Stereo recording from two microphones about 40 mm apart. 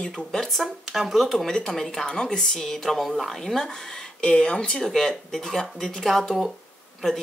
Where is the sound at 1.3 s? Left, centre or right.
Centre.